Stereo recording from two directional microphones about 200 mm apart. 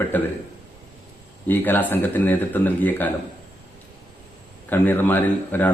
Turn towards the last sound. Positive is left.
turn(degrees=10)  # may be behind; listen again after turning